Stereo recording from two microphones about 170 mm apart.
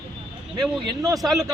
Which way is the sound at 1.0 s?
20° right (ahead or behind).